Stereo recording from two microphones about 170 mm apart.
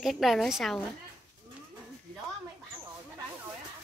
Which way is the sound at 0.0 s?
Centre (ahead or behind).